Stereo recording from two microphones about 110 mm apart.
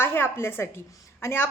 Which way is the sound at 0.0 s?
20° left (ahead or behind).